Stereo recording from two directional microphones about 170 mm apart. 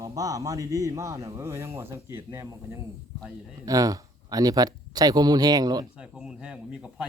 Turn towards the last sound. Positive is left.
turn(degrees=-5)  # may be behind; listen again after turning